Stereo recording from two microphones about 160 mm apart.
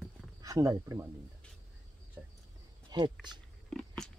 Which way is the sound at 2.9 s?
25° right (ahead or behind).